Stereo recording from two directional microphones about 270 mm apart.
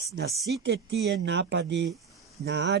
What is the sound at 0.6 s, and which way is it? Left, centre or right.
Speech, right.